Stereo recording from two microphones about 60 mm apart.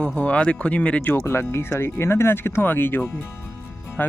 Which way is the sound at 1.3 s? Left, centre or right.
Left.